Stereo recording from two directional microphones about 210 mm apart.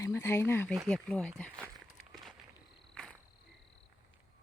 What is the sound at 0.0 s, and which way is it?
Speech, 15° left (ahead or behind).